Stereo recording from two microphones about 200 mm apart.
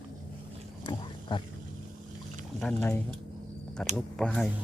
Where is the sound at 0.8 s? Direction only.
25° left (ahead or behind).